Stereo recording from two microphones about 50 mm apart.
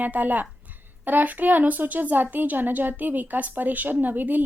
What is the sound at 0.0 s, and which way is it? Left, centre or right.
Speech, right.